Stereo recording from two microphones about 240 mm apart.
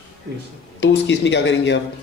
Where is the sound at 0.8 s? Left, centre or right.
Left.